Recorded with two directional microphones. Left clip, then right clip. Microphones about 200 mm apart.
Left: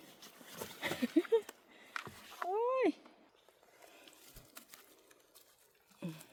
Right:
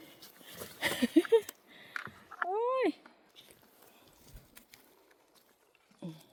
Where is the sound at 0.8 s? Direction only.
30° right (ahead or behind).